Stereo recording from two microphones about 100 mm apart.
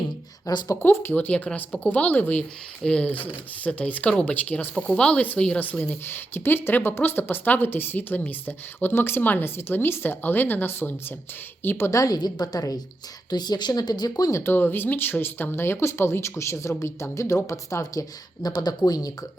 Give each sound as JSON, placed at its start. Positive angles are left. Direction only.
{"t": 0.4, "sound": "a woman's voice", "side_deg": 35}
{"t": 0.8, "sound": "speech", "side_deg": 20}
{"t": 11.9, "sound": "a woman's voice", "side_deg": 35}
{"t": 18.4, "sound": "a woman's voice", "side_deg": 45}